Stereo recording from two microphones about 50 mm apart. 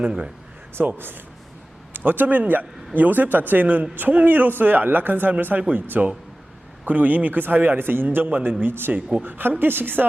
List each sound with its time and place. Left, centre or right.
0.8 s a woman's voice: right
6.0 s speech: right
6.8 s a man's voice: right